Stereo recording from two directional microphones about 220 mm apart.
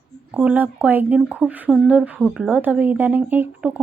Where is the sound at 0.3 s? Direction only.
5° right (ahead or behind).